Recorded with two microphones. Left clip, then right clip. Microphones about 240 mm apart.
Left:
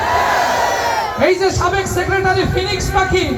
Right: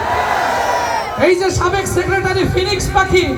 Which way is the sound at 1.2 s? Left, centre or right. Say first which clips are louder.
Right 1 dB; right.